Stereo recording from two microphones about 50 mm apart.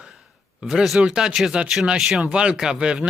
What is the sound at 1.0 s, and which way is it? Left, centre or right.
Speech, centre.